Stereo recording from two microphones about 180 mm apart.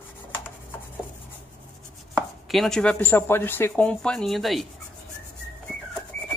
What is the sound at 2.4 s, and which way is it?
Speech, centre (ahead or behind).